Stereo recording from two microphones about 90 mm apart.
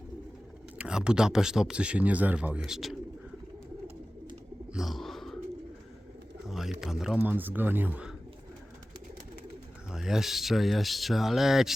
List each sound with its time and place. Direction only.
0.8 s speech: 10° right (ahead or behind)
4.7 s a sound: centre (ahead or behind)
6.5 s speech: 5° right (ahead or behind)
7.2 s speech: 20° right (ahead or behind)
9.9 s speech: 5° right (ahead or behind)